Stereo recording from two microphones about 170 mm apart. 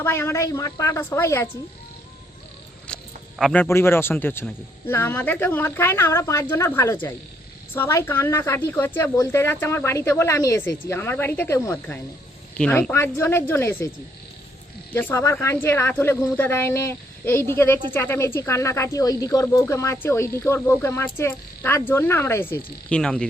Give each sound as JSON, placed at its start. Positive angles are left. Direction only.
{"t": 0.0, "sound": "speech", "side_deg": 15}
{"t": 2.8, "sound": "speech", "side_deg": 5}
{"t": 14.9, "sound": "speech", "side_deg": 15}